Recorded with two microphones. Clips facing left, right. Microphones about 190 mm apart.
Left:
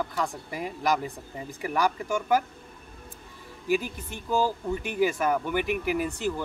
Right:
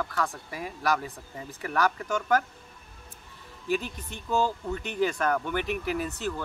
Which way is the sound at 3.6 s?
10° left (ahead or behind).